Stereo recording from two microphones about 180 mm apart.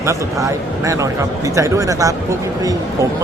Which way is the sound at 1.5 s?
20° right (ahead or behind).